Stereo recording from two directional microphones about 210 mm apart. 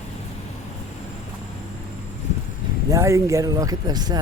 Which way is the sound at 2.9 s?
15° right (ahead or behind).